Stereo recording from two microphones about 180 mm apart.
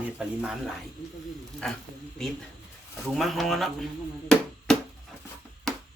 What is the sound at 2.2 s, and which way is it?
Speech, 5° left (ahead or behind).